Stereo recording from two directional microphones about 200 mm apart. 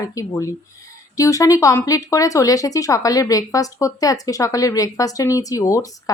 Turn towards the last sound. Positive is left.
turn(degrees=15)  # may be behind; listen again after turning